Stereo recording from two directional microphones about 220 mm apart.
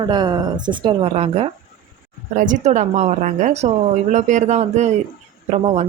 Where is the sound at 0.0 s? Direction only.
20° right (ahead or behind).